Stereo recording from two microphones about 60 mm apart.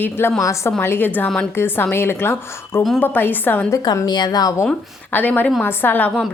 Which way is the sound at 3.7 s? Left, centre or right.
Left.